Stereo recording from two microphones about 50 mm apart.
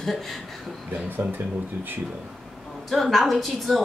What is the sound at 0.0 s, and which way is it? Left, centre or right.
Speech, centre.